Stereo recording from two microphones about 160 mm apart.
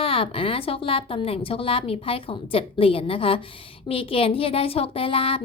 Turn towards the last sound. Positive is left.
turn(degrees=35)  # may be behind; listen again after turning